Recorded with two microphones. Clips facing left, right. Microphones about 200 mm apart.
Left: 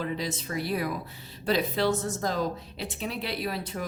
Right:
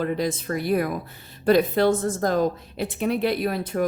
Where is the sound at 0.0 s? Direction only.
50° right (ahead or behind).